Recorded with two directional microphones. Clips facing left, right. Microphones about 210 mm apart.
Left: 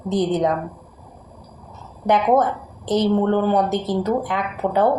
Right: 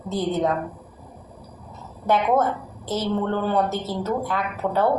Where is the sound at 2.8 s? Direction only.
15° left (ahead or behind).